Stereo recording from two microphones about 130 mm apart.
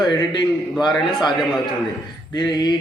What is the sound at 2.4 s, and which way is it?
Speech, 30° left (ahead or behind).